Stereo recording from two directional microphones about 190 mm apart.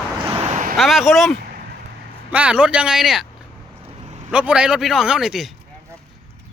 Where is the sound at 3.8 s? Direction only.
35° right (ahead or behind).